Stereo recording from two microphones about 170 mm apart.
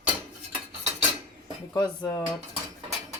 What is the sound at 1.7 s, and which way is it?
Speech, 25° left (ahead or behind).